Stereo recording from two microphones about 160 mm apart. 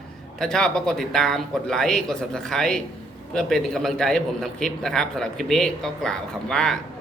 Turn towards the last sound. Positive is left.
turn(degrees=5)  # may be behind; listen again after turning